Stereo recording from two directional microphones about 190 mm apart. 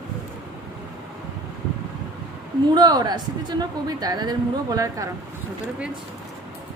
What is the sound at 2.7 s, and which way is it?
Speech, 20° right (ahead or behind).